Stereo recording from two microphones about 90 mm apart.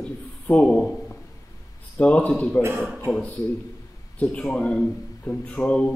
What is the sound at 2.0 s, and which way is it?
Speech, 15° left (ahead or behind).